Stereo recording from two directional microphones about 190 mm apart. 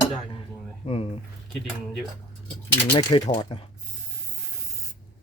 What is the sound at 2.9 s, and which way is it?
Speech, 25° left (ahead or behind).